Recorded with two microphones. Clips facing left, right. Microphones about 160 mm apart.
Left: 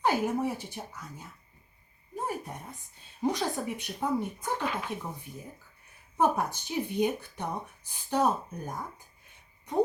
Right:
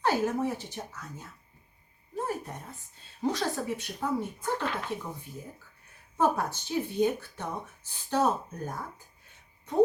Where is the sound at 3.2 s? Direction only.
15° left (ahead or behind).